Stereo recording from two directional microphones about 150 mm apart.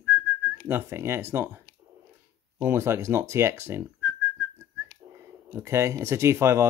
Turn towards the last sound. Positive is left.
turn(degrees=-15)  # may be behind; listen again after turning